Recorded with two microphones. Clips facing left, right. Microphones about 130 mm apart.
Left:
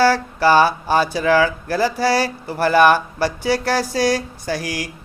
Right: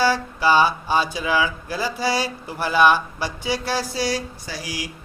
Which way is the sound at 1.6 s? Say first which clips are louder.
Left 7 dB; 65° left (ahead or behind).